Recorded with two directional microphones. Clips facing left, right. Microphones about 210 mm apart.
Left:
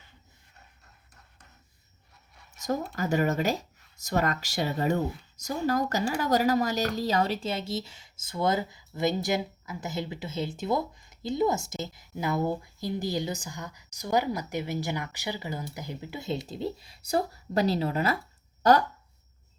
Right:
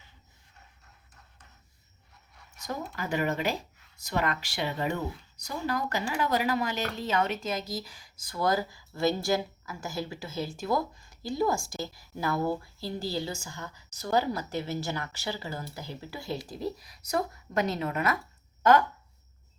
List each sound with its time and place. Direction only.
2.6 s speech: 40° left (ahead or behind)